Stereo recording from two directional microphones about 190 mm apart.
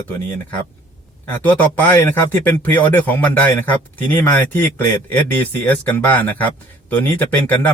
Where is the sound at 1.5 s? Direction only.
10° left (ahead or behind).